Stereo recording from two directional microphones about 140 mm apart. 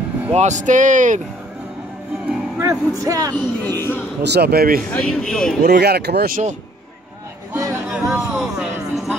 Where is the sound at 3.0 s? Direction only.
25° right (ahead or behind).